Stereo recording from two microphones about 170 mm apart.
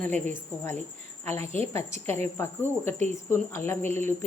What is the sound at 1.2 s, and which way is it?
A woman's voice, 15° left (ahead or behind).